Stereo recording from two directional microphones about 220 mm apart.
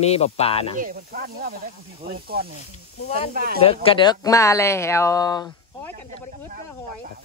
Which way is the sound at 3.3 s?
40° right (ahead or behind).